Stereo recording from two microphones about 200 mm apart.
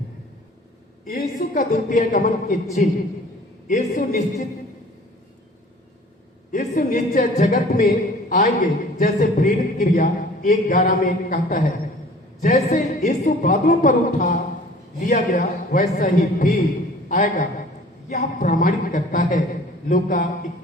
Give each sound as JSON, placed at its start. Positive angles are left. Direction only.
{"t": 1.0, "sound": "a man's voice", "side_deg": 45}
{"t": 6.5, "sound": "a woman's voice", "side_deg": 40}